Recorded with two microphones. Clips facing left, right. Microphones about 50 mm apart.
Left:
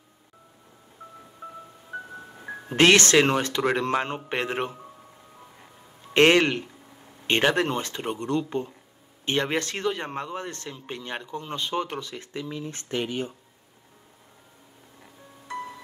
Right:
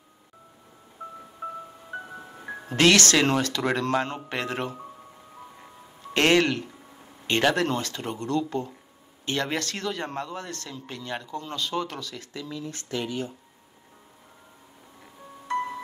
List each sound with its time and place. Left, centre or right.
2.1 s music: centre
2.7 s speech: left
6.1 s speech: left
15.4 s music: right